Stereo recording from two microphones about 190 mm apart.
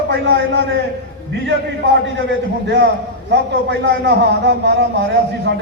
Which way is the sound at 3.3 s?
65° right (ahead or behind).